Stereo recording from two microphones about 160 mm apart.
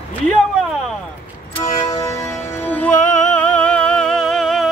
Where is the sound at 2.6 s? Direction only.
10° left (ahead or behind).